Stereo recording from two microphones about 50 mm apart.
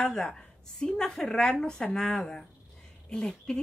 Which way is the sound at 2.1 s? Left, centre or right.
Left.